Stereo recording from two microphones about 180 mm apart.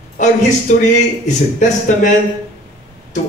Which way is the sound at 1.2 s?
45° left (ahead or behind).